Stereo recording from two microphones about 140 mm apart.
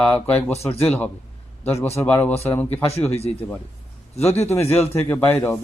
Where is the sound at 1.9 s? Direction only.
15° left (ahead or behind).